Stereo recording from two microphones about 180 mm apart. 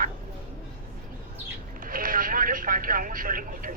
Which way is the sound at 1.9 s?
50° right (ahead or behind).